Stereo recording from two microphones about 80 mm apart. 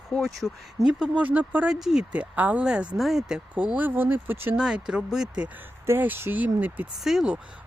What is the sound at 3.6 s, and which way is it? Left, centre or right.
Speech, centre.